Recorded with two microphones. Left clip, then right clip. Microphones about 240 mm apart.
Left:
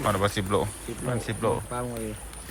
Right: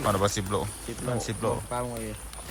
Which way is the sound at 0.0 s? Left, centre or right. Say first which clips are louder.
Even; right.